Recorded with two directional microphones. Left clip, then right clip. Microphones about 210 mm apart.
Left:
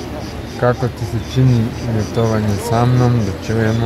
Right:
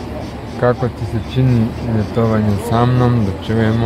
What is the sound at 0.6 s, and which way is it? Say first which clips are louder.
Speech: right 1 dB; 5° right (ahead or behind).